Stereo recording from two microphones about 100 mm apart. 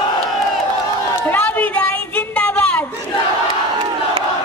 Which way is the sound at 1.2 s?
20° left (ahead or behind).